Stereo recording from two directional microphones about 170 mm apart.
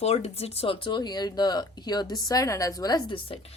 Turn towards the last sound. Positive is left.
turn(degrees=30)  # may be behind; listen again after turning